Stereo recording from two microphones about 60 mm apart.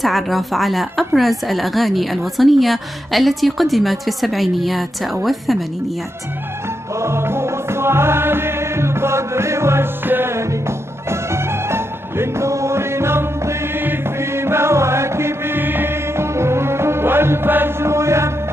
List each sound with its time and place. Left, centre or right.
0.0 s a woman's voice: centre
7.0 s music: right
10.0 s music: right
11.1 s music: right
17.8 s chant: right